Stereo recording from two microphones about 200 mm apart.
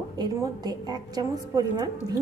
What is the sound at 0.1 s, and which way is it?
A woman's voice, 15° right (ahead or behind).